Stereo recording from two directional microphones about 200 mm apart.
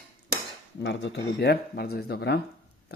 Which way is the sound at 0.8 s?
60° left (ahead or behind).